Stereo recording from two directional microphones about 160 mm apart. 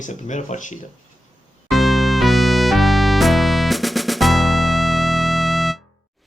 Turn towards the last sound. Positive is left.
turn(degrees=0)  # may be behind; listen again after turning